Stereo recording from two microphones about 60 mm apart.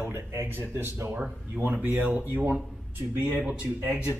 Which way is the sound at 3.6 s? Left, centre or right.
Right.